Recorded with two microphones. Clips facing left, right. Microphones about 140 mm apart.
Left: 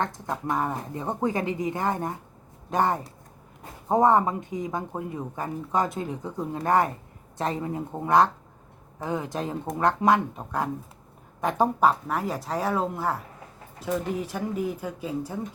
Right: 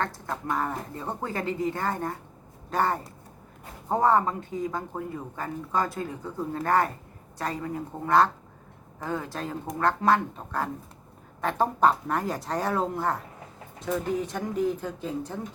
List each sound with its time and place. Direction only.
0.0 s speech: 20° left (ahead or behind)